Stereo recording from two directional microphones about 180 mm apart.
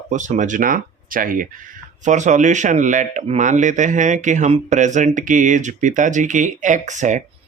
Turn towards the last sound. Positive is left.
turn(degrees=-45)  # may be behind; listen again after turning